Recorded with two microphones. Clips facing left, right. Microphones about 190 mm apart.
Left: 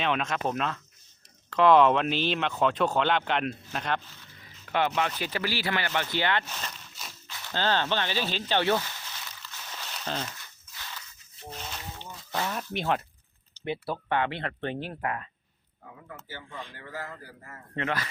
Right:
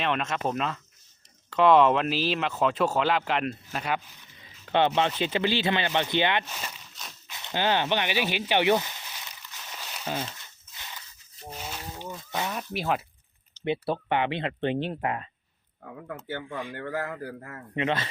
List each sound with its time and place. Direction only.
0.0 s speech: centre (ahead or behind); by 6.4 s 20° right (ahead or behind)
6.5 s speech: 5° right (ahead or behind)
6.9 s a sound: centre (ahead or behind)
7.3 s a sound: 20° right (ahead or behind)
10.2 s a sound: 25° right (ahead or behind)
12.5 s speech: 5° right (ahead or behind)
13.7 s speech: 20° right (ahead or behind)
15.8 s speech: 60° right (ahead or behind)
17.7 s speech: 25° right (ahead or behind)